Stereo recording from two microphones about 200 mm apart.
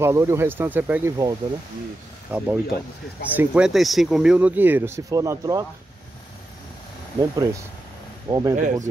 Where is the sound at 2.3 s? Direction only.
10° right (ahead or behind).